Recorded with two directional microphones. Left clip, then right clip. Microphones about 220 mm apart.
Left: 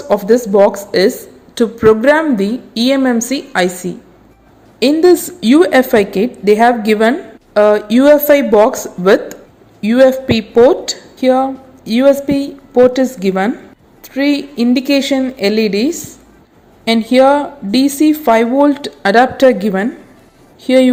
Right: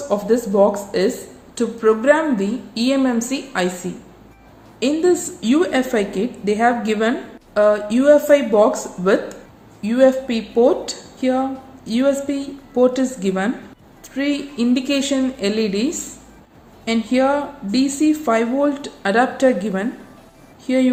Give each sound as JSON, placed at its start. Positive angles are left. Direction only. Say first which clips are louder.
{"t": 0.1, "sound": "a woman's voice", "louder": "left 8 dB", "side_deg": 35}